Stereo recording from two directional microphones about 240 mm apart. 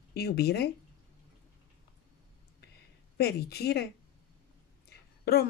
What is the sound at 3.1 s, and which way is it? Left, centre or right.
Speech, left.